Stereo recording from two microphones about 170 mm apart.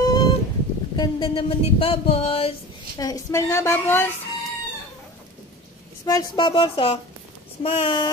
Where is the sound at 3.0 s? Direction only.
20° left (ahead or behind).